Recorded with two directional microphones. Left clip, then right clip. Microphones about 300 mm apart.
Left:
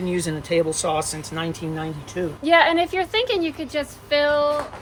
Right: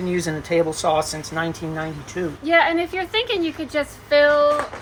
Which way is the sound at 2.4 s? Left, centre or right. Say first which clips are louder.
Left 1 dB; left.